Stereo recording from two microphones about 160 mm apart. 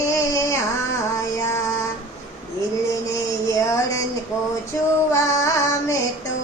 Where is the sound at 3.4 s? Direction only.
20° left (ahead or behind).